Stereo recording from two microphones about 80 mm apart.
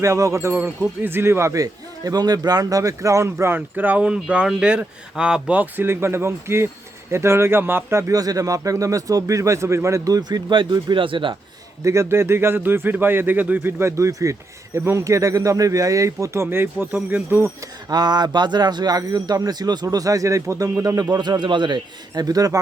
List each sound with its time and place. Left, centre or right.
0.0 s speech: right
8.1 s speech: right
10.5 s speech: right
11.9 s a man's voice: right
17.9 s speech: right